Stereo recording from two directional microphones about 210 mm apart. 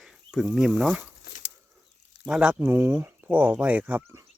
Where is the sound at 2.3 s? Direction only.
5° right (ahead or behind).